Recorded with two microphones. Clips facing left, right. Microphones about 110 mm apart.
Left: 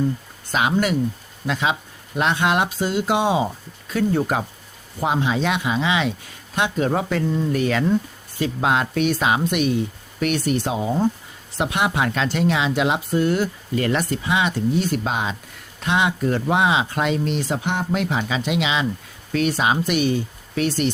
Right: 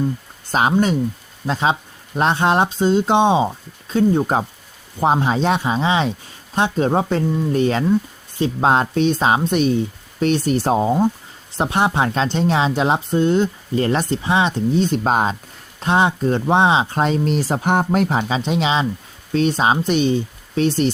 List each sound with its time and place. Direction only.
0.5 s speech: 35° right (ahead or behind)
15.0 s speech: 40° right (ahead or behind)